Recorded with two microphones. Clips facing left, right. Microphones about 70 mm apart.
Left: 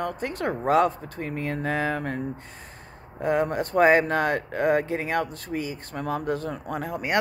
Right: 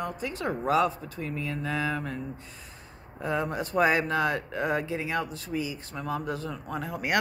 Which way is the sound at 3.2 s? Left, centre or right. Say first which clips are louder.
Left 5 dB; left.